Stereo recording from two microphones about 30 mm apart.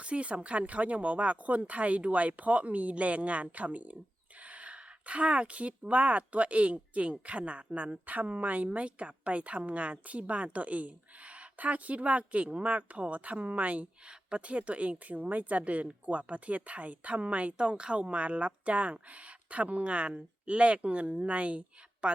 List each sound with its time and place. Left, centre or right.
0.0 s speech: right
17.6 s speech: right